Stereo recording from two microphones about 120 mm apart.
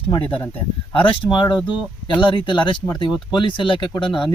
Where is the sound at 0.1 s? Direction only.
45° left (ahead or behind).